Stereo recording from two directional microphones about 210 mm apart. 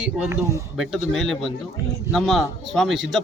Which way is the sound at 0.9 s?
Centre (ahead or behind).